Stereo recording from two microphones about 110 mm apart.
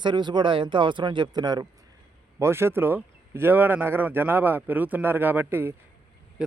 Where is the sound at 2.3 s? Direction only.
25° right (ahead or behind).